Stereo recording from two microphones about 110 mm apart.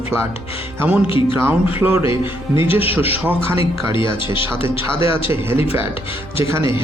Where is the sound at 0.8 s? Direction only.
15° right (ahead or behind).